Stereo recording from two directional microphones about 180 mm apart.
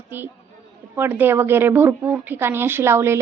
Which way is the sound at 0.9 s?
10° right (ahead or behind).